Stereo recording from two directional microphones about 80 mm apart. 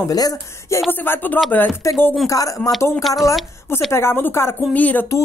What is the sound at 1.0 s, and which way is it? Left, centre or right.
Speech, left.